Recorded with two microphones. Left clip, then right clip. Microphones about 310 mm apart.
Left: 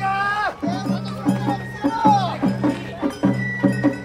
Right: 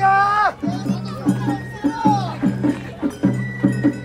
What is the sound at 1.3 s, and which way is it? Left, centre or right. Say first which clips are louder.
Music: even; left.